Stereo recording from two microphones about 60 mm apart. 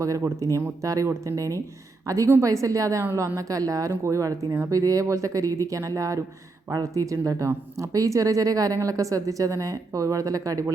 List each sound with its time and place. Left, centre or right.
0.0 s speech: right